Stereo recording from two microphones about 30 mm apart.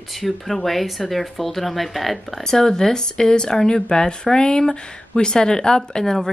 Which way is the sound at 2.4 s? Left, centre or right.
Centre.